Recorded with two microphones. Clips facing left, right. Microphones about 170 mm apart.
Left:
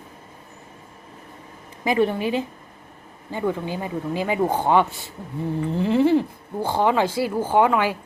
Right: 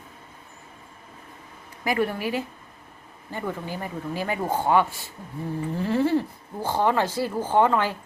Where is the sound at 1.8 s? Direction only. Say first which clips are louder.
Left 4 dB; 20° left (ahead or behind).